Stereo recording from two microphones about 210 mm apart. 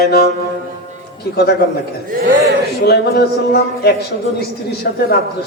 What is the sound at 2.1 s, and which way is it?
Speech, 50° right (ahead or behind).